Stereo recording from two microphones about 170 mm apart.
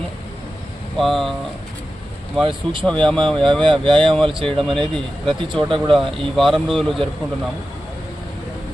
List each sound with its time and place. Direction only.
0.9 s speech: centre (ahead or behind)
2.4 s speech: centre (ahead or behind)
3.6 s speech: 30° right (ahead or behind)
4.0 s speech: 5° left (ahead or behind)
4.3 s speech: 30° right (ahead or behind)
4.6 s speech: 5° left (ahead or behind)
5.4 s speech: 30° right (ahead or behind)
5.9 s speech: centre (ahead or behind)